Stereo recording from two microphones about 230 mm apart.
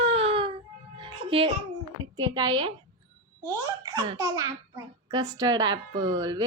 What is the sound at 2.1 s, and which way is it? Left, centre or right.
A child's voice, centre.